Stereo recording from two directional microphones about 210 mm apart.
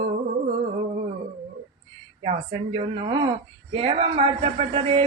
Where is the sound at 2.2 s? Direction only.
25° right (ahead or behind).